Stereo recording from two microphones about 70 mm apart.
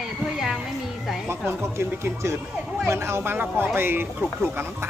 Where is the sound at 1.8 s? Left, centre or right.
Right.